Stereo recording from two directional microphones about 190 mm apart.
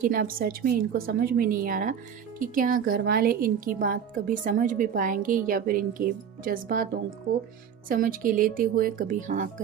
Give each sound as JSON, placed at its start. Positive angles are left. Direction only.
{"t": 0.0, "sound": "speech", "side_deg": -50}